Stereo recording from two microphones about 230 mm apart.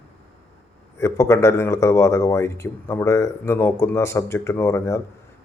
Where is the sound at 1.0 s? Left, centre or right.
Centre.